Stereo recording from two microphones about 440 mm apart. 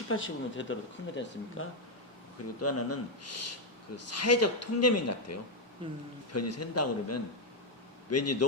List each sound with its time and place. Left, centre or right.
0.1 s speech: left